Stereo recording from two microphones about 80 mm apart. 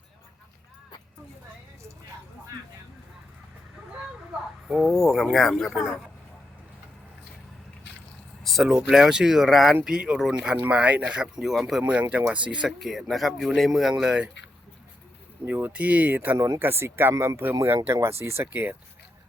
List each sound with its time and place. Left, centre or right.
4.8 s speech: centre
8.4 s vehicle: centre
8.8 s speech: centre
11.8 s speech: centre
12.6 s speech: centre
15.4 s speech: right
18.5 s speech: right